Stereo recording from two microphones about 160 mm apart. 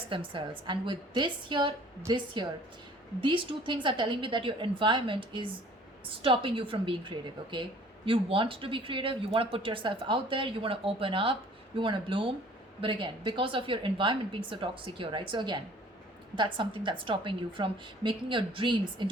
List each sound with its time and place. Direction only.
0.1 s speech: 30° right (ahead or behind)